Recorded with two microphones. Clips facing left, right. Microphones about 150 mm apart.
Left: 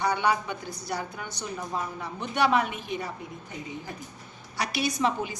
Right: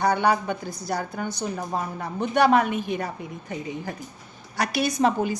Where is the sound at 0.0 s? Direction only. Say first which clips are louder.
Right 4 dB; 45° right (ahead or behind).